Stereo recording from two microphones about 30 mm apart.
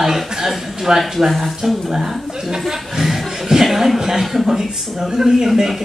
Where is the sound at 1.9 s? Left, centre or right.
Centre.